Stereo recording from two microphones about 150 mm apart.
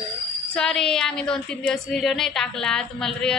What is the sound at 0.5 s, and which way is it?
A woman's voice, 5° left (ahead or behind).